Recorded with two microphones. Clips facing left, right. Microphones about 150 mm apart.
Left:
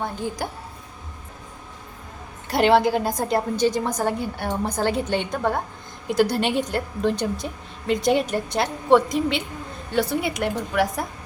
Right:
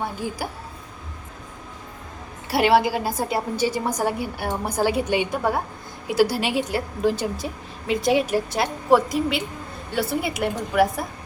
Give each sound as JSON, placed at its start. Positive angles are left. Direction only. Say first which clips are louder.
{"t": 0.0, "sound": "a woman's voice", "louder": "even", "side_deg": -5}
{"t": 2.5, "sound": "a woman's voice", "louder": "left 1 dB", "side_deg": -5}